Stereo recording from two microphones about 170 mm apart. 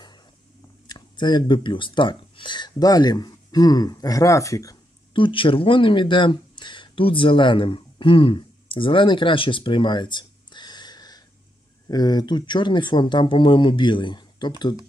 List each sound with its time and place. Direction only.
0.8 s speech: 25° left (ahead or behind)
5.1 s speech: 30° left (ahead or behind)